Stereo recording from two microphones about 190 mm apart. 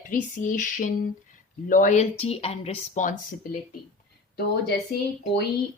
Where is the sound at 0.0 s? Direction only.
45° left (ahead or behind).